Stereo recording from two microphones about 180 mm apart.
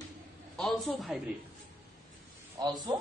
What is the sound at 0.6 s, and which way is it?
Speech, centre (ahead or behind).